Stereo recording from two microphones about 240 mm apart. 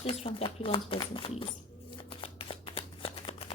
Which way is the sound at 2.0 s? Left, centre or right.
Left.